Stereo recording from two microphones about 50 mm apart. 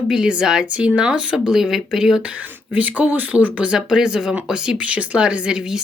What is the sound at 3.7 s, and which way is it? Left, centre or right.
Speech, centre.